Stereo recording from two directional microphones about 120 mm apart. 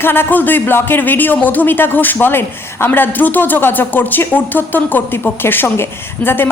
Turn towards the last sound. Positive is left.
turn(degrees=20)  # may be behind; listen again after turning